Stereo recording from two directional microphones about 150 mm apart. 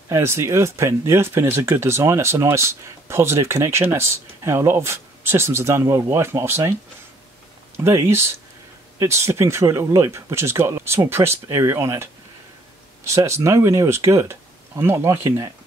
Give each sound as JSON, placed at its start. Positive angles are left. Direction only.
{"t": 0.1, "sound": "speech", "side_deg": -20}
{"t": 7.7, "sound": "speech", "side_deg": -15}